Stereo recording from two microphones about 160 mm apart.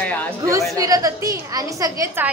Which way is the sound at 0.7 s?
20° right (ahead or behind).